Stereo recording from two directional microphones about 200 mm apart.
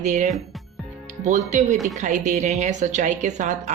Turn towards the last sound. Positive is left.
turn(degrees=-35)  # may be behind; listen again after turning